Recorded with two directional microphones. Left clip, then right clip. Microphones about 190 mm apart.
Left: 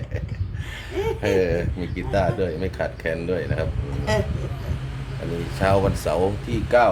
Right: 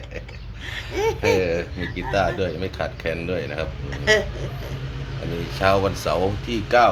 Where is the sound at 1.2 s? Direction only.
15° left (ahead or behind).